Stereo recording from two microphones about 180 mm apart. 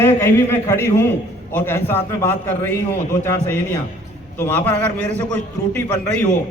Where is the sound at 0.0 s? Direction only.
15° left (ahead or behind).